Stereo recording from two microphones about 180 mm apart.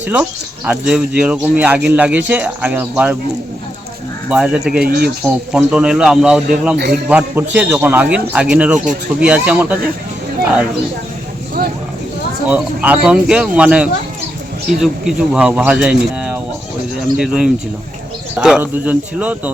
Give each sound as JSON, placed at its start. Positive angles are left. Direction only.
{"t": 0.0, "sound": "speech", "side_deg": -10}
{"t": 4.3, "sound": "speech", "side_deg": -10}
{"t": 4.8, "sound": "speech", "side_deg": -55}
{"t": 5.2, "sound": "speech", "side_deg": -5}
{"t": 12.5, "sound": "speech", "side_deg": -10}